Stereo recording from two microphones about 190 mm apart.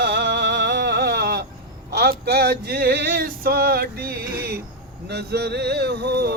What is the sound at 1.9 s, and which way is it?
Speech, 55° right (ahead or behind).